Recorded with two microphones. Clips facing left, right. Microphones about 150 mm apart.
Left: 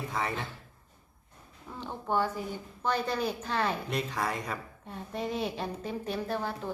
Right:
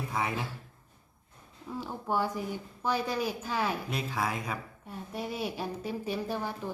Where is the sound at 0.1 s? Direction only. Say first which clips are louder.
Right 1 dB; 10° right (ahead or behind).